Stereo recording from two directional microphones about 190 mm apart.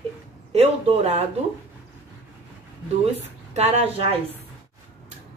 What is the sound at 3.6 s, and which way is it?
Speech, 35° right (ahead or behind).